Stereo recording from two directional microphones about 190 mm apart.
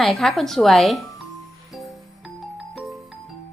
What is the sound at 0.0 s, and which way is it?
Speech, centre (ahead or behind).